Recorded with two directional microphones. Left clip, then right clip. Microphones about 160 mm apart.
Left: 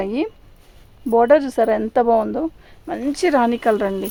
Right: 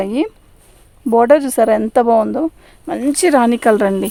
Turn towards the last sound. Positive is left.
turn(degrees=-90)